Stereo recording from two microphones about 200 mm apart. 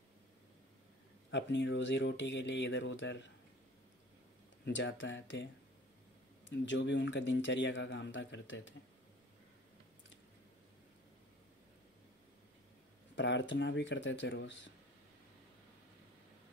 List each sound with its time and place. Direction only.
1.3 s speech: 65° left (ahead or behind)
4.6 s speech: 65° left (ahead or behind)
6.5 s speech: 65° left (ahead or behind)
13.1 s speech: 65° left (ahead or behind)